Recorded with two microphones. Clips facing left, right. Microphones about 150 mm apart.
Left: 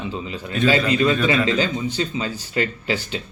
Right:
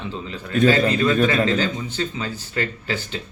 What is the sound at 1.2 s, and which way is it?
Speech, 40° right (ahead or behind).